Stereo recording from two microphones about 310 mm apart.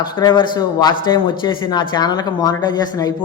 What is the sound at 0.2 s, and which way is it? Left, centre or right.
Speech, centre.